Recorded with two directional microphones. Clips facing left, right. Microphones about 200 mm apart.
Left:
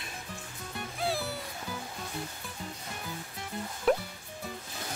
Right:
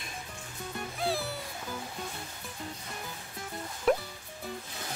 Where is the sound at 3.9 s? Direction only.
Centre (ahead or behind).